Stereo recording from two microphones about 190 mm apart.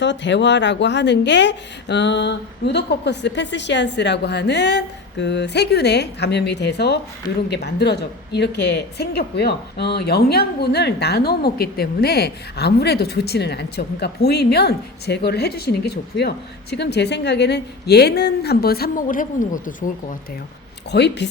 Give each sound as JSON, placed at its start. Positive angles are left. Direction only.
{"t": 0.0, "sound": "speech", "side_deg": 70}
{"t": 20.9, "sound": "speech", "side_deg": 60}